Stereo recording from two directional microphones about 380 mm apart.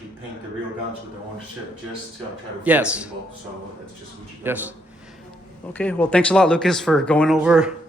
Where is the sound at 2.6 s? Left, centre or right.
Centre.